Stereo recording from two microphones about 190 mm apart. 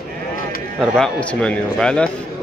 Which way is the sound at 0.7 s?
Centre (ahead or behind).